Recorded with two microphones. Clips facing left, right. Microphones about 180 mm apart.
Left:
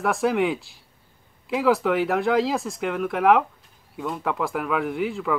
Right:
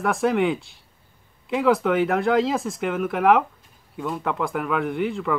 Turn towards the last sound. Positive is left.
turn(degrees=0)  # may be behind; listen again after turning